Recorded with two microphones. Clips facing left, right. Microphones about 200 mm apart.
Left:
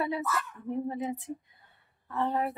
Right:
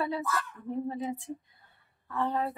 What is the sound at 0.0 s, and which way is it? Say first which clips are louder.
A woman's voice: left 1 dB; 20° left (ahead or behind).